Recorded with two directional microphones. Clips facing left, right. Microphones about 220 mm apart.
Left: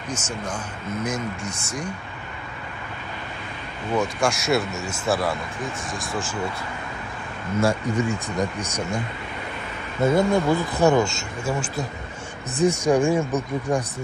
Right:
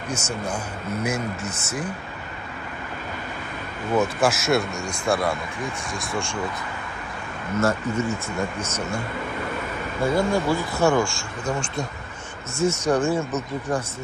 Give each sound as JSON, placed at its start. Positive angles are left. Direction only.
{"t": 1.0, "sound": "speech", "side_deg": -5}
{"t": 4.0, "sound": "speech", "side_deg": -5}
{"t": 7.6, "sound": "speech", "side_deg": 15}
{"t": 10.0, "sound": "speech", "side_deg": 20}
{"t": 11.4, "sound": "speech", "side_deg": 5}